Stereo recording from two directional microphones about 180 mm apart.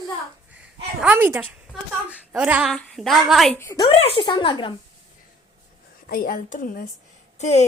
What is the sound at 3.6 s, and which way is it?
A woman's voice, 20° left (ahead or behind).